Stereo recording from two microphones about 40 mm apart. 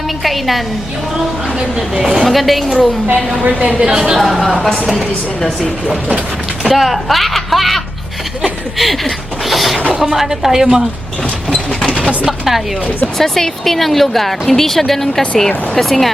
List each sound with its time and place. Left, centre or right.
0.2 s a woman's voice: centre
1.5 s a woman's voice: centre
2.2 s a woman's voice: centre
3.8 s a woman's voice: right
4.2 s a woman's voice: centre
6.6 s a sound: centre
6.8 s a woman's voice: centre
8.8 s a sound: centre
9.9 s a woman's voice: centre
11.9 s speech: left
12.2 s a woman's voice: centre
13.1 s a woman's voice: centre